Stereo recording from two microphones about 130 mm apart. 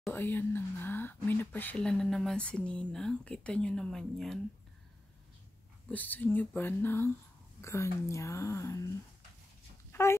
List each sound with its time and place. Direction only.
0.1 s speech: 15° left (ahead or behind)
5.9 s speech: 15° left (ahead or behind)
9.9 s speech: 20° left (ahead or behind)